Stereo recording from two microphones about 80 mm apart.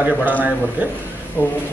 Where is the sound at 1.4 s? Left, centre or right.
Left.